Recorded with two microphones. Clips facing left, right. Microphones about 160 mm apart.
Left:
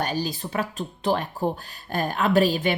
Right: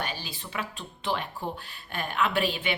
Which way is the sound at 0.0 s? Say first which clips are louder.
Left 9 dB; 40° left (ahead or behind).